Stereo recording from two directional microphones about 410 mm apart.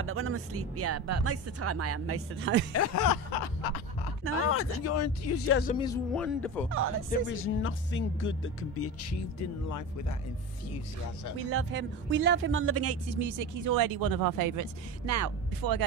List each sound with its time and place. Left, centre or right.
0.0 s speech: right
2.7 s speech: left
3.3 s a sound: left
4.5 s speech: left
5.7 s speech: centre
7.1 s speech: left
9.7 s speech: left
11.3 s speech: right